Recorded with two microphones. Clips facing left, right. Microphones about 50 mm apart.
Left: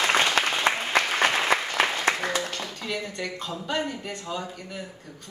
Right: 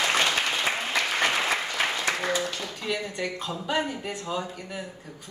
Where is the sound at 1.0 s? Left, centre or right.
Left.